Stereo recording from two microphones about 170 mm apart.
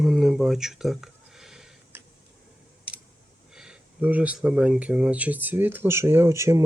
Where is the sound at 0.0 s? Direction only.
Centre (ahead or behind).